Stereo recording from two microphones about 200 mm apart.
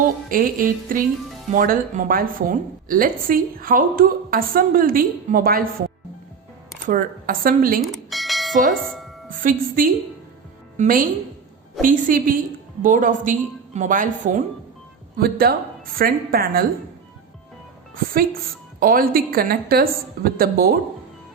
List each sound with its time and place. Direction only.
0.0 s a woman's voice: 45° right (ahead or behind)
6.8 s a woman's voice: 45° right (ahead or behind)
7.8 s bell: centre (ahead or behind)
8.5 s speech: 40° right (ahead or behind)
8.8 s speech: centre (ahead or behind)
9.3 s a woman's voice: 40° right (ahead or behind)
17.9 s a woman's voice: 45° right (ahead or behind)